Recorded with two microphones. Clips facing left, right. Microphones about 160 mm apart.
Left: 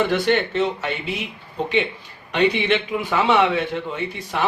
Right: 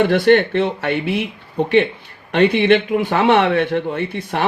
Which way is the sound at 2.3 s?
55° right (ahead or behind).